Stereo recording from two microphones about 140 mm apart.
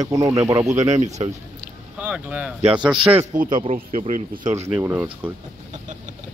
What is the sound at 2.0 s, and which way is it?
Speech, 10° right (ahead or behind).